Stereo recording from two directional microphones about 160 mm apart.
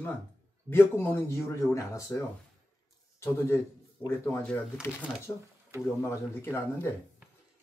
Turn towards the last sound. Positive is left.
turn(degrees=15)  # may be behind; listen again after turning